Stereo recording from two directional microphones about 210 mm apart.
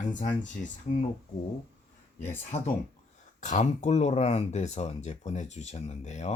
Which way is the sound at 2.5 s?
35° left (ahead or behind).